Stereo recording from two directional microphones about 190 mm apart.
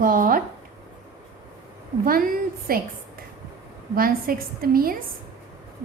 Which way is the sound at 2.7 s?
50° right (ahead or behind).